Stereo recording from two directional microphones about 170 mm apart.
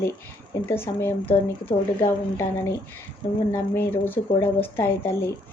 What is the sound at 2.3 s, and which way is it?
Speech, 15° left (ahead or behind).